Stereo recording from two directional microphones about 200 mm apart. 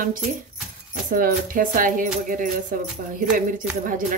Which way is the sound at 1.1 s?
45° right (ahead or behind).